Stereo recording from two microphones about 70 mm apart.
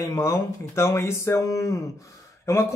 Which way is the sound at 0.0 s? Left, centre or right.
Left.